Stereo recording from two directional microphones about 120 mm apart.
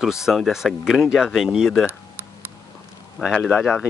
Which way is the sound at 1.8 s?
20° right (ahead or behind).